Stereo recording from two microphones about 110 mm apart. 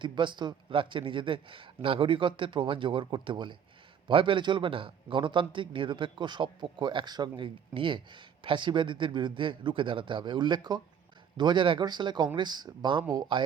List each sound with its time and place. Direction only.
0.0 s a man's voice: 45° right (ahead or behind)